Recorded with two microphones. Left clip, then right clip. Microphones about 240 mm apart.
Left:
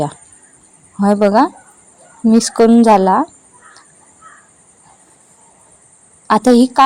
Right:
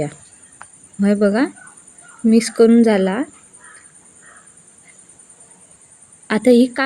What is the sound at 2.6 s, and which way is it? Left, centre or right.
Speech, centre.